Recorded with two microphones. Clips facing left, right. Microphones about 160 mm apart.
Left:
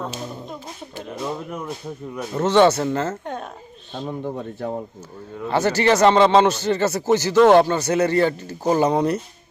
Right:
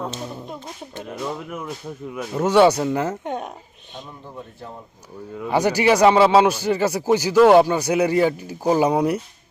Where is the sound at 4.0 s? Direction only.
60° left (ahead or behind).